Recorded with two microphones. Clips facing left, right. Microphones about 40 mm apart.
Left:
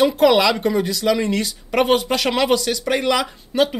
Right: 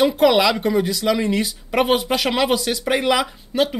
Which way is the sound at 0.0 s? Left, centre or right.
Centre.